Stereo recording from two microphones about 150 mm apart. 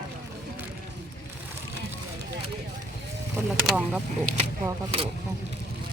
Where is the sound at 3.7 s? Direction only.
10° right (ahead or behind).